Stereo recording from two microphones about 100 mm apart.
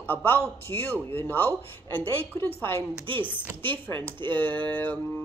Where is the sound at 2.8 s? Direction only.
55° right (ahead or behind).